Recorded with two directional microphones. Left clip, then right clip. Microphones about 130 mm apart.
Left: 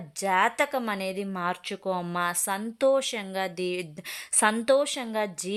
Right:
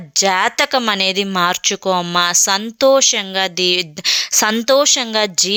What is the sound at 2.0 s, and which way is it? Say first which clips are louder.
Speech: right 14 dB; 20° right (ahead or behind).